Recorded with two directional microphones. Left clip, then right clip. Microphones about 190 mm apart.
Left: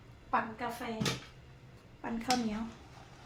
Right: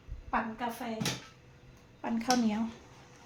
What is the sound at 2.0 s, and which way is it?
Speech, 40° right (ahead or behind).